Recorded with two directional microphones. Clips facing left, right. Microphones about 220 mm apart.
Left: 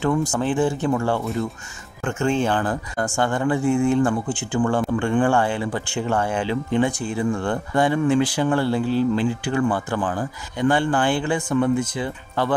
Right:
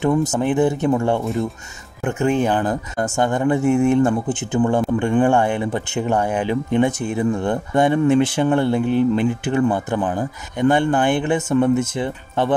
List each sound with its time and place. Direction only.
0.0 s speech: 20° right (ahead or behind)
3.6 s speech: 70° right (ahead or behind)
4.5 s speech: 20° right (ahead or behind)